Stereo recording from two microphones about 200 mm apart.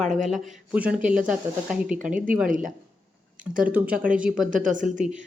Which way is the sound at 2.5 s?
40° right (ahead or behind).